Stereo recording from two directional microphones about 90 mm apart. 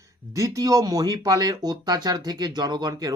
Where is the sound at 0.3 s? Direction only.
40° right (ahead or behind).